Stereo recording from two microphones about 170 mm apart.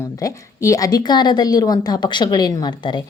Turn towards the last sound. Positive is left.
turn(degrees=25)  # may be behind; listen again after turning